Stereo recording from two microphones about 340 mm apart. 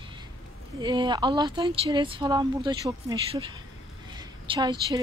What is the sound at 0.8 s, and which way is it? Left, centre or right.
A woman's voice, centre.